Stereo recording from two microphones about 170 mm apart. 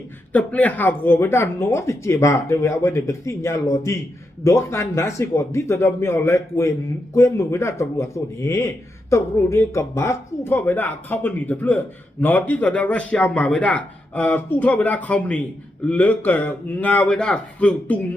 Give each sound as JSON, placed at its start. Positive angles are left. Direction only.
{"t": 0.3, "sound": "a man's voice", "side_deg": 10}